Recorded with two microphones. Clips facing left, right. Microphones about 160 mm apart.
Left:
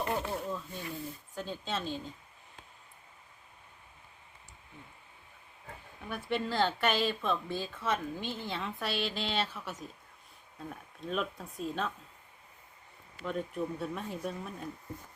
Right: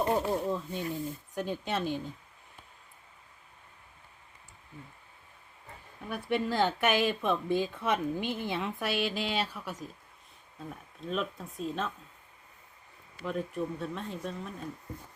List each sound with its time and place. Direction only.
0.0 s snake: 35° right (ahead or behind)
0.5 s speech: 20° right (ahead or behind)
6.0 s speech: 10° right (ahead or behind)
13.2 s speech: centre (ahead or behind)